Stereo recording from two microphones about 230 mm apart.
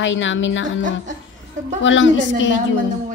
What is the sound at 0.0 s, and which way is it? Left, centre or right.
A woman's voice, left.